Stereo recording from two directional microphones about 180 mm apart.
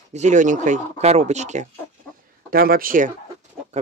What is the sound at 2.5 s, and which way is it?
Speech, 55° right (ahead or behind).